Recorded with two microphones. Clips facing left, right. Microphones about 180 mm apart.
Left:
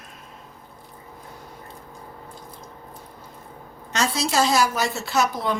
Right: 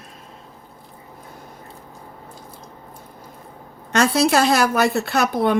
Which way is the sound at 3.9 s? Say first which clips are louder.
Right 6 dB; 60° right (ahead or behind).